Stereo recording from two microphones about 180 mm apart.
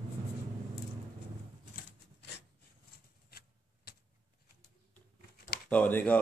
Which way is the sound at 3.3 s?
60° left (ahead or behind).